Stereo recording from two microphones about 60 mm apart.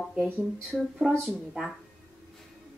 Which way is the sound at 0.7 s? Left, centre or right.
Centre.